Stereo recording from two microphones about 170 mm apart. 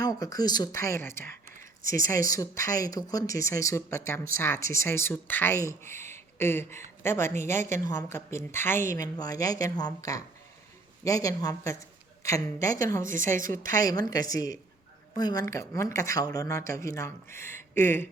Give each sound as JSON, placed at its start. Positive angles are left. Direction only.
{"t": 0.0, "sound": "a woman's voice", "side_deg": 20}